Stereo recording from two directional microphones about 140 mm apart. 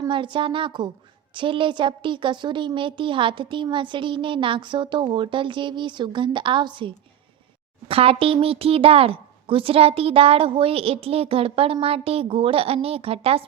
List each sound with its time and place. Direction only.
0.1 s a woman's voice: 35° right (ahead or behind)